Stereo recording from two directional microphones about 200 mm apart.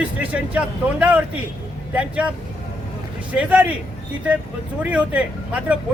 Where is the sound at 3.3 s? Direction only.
5° right (ahead or behind).